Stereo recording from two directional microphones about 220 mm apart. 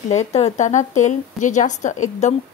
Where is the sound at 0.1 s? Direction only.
30° left (ahead or behind).